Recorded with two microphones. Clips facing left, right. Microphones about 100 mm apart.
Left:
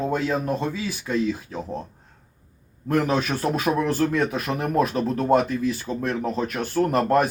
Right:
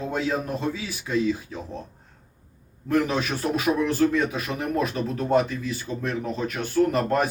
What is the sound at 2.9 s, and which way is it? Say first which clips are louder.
A man's voice: left 1 dB; 40° left (ahead or behind).